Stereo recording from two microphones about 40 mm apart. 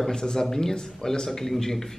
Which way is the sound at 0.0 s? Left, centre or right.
Centre.